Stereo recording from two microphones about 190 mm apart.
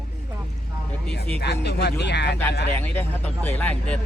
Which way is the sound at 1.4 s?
60° left (ahead or behind).